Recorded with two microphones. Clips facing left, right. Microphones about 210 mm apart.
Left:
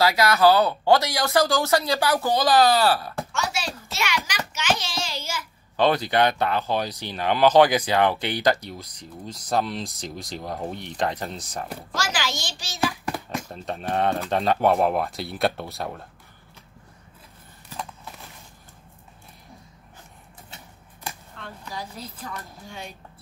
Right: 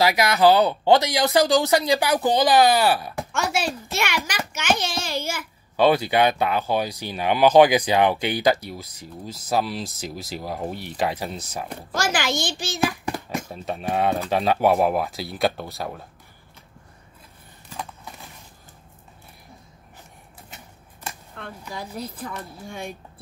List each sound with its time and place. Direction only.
0.0 s speech: 20° right (ahead or behind)
3.3 s a child's voice: 55° right (ahead or behind)
5.8 s speech: 10° right (ahead or behind)
11.9 s speech: 55° right (ahead or behind)
12.8 s speech: 5° right (ahead or behind)
22.2 s speech: 50° right (ahead or behind)